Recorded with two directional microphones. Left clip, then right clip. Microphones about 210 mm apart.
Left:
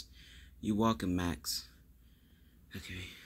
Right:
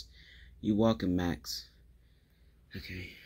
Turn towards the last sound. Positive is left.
turn(degrees=-5)  # may be behind; listen again after turning